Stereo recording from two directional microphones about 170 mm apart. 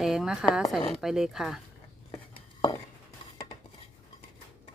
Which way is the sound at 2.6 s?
20° left (ahead or behind).